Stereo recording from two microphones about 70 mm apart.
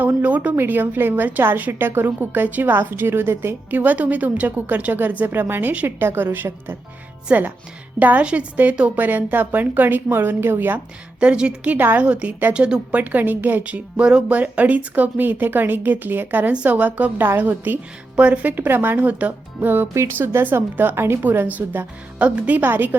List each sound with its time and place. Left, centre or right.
0.0 s a woman's voice: right
3.7 s a woman's voice: right
11.2 s a woman's voice: centre
13.0 s a woman's voice: right